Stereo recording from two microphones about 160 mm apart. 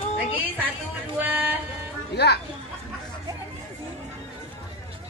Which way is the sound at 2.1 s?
90° left.